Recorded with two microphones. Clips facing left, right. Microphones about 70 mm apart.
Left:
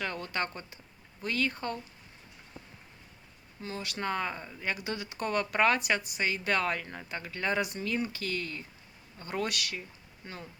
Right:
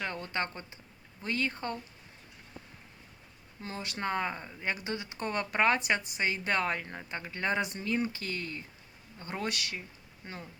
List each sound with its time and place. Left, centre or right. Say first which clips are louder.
0.0 s speech: left 1 dB; right
3.6 s speech: left 1 dB; right